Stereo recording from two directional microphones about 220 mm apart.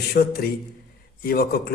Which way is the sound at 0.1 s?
45° left (ahead or behind).